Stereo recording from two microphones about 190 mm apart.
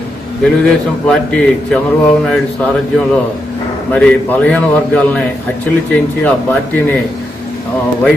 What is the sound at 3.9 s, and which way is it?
A man's voice, 5° left (ahead or behind).